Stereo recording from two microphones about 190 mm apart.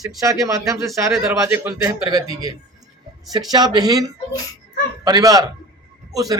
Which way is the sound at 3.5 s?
20° right (ahead or behind).